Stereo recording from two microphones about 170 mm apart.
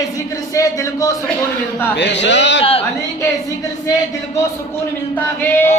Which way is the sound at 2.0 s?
90° left.